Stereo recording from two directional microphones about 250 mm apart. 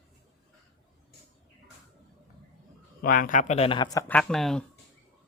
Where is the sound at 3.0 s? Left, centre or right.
Left; by 4.7 s centre.